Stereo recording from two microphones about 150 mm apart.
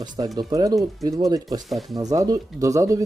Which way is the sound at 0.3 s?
25° right (ahead or behind).